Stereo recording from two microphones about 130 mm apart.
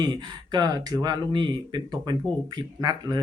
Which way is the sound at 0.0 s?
30° right (ahead or behind).